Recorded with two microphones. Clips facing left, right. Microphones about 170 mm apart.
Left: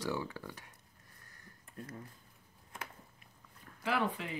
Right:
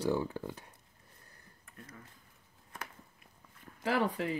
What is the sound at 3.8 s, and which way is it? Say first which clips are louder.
Speech: right 3 dB; 40° right (ahead or behind).